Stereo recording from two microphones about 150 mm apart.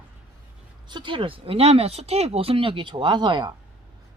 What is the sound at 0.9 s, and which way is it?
Speech, 30° right (ahead or behind).